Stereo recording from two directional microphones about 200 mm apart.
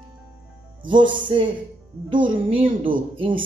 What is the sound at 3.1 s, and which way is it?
Speech, 25° right (ahead or behind).